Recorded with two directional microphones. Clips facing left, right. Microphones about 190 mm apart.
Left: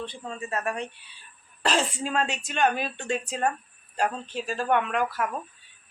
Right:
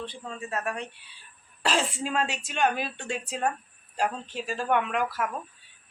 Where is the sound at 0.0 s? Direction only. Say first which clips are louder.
Left 2 dB; centre (ahead or behind).